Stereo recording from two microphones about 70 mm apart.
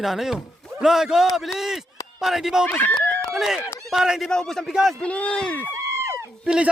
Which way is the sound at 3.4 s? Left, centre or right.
Centre.